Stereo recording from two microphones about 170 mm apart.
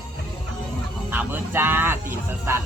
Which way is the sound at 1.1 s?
10° right (ahead or behind).